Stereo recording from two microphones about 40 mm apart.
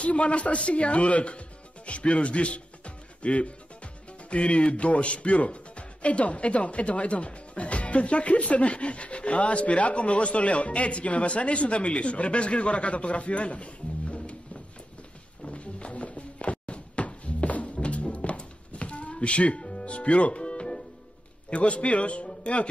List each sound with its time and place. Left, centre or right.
0.0 s a man's voice: left
15.4 s music: left
21.5 s a man's voice: left
22.3 s a sound: left